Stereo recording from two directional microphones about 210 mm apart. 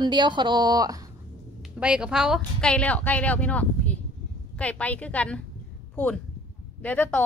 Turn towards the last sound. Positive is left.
turn(degrees=5)  # may be behind; listen again after turning